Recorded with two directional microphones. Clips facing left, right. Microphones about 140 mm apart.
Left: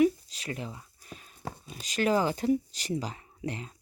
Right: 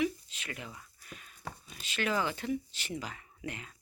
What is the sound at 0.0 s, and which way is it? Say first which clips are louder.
Speech: left 8 dB; 40° left (ahead or behind).